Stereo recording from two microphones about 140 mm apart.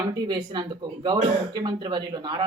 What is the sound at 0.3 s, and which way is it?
Speech, 35° right (ahead or behind).